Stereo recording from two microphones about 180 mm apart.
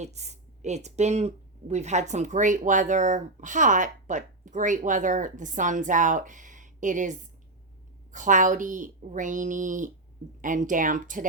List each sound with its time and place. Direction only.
0.0 s speech: 40° right (ahead or behind)